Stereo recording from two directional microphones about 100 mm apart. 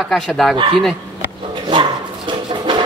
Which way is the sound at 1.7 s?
55° right (ahead or behind).